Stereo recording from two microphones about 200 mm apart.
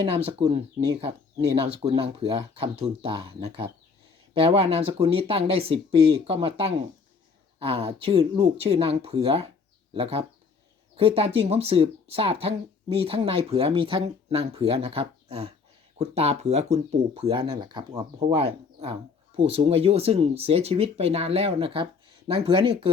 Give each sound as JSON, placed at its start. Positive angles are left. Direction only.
{"t": 0.3, "sound": "speech", "side_deg": -25}